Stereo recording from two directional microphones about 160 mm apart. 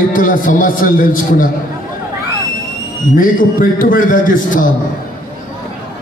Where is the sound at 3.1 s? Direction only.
55° left (ahead or behind).